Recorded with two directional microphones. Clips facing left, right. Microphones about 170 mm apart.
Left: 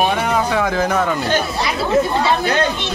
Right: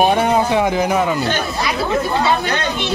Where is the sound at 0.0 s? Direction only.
30° right (ahead or behind); by 1.2 s 10° right (ahead or behind).